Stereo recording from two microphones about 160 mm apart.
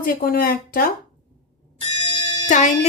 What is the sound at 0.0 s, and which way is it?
Speech, 65° left (ahead or behind).